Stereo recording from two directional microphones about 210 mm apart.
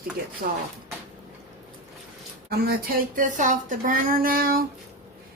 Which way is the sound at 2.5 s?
45° right (ahead or behind).